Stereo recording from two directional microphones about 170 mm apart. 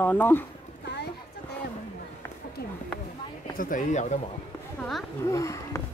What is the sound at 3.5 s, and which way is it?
Speech, 50° left (ahead or behind).